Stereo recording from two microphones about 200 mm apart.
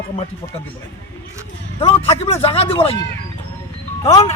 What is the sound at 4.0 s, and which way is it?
Speech, 20° left (ahead or behind).